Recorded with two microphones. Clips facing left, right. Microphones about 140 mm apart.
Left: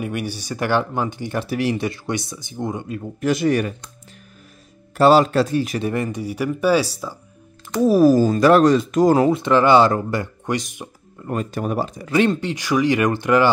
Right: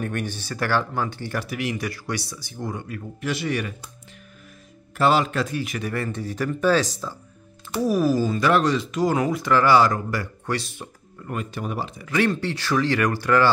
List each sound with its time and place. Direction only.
0.0 s speech: 10° left (ahead or behind)
3.2 s speech: 45° left (ahead or behind)
4.9 s speech: 35° left (ahead or behind)
5.9 s speech: 15° left (ahead or behind)
8.0 s speech: 45° left (ahead or behind)
9.2 s speech: 25° left (ahead or behind)
11.2 s speech: 40° left (ahead or behind)
12.2 s speech: 20° left (ahead or behind)